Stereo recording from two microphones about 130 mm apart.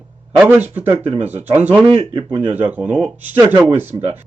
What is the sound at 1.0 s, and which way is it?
Speech, 50° right (ahead or behind).